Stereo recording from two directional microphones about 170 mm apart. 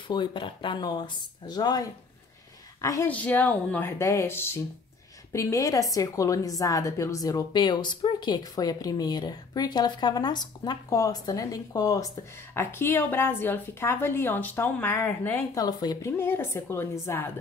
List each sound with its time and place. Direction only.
0.1 s a woman's voice: 30° left (ahead or behind)